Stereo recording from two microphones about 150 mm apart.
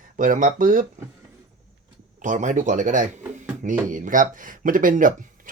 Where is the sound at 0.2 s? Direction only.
60° right (ahead or behind).